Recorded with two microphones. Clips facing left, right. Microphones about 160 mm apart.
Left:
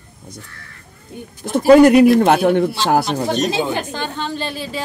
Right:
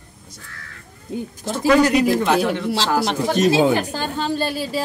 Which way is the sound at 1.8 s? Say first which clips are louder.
Left 7 dB; 55° left (ahead or behind).